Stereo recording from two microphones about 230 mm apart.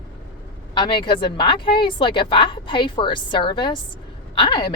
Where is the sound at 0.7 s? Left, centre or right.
Centre.